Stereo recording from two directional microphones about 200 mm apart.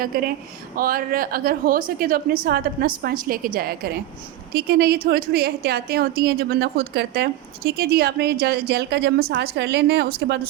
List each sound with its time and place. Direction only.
0.0 s a woman's voice: 45° right (ahead or behind)